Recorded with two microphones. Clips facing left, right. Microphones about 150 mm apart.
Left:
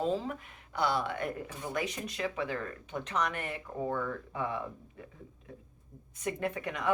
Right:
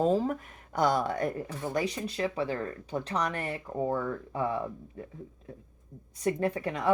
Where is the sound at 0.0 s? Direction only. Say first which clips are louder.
Right 6 dB; 40° right (ahead or behind).